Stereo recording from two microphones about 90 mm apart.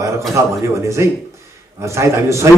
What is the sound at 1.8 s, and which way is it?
Speech, 30° right (ahead or behind).